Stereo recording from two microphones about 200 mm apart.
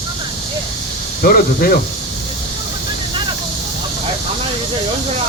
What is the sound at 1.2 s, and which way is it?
Speech, 50° left (ahead or behind).